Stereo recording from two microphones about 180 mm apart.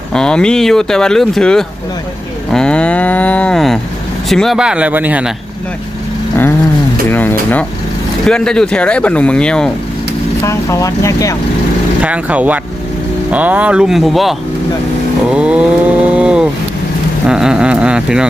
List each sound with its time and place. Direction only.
0.1 s speech: 5° left (ahead or behind)
7.1 s speech: 10° left (ahead or behind)
10.4 s speech: 15° left (ahead or behind)
12.0 s speech: 5° right (ahead or behind)
15.3 s a sound: 5° right (ahead or behind)